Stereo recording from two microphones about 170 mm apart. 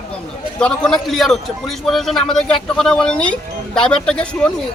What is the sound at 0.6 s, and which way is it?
A man's voice, 5° left (ahead or behind).